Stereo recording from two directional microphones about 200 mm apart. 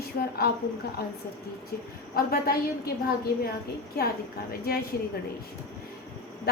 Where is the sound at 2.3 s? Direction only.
50° left (ahead or behind).